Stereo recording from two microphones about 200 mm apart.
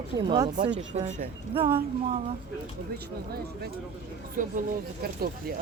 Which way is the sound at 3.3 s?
50° right (ahead or behind).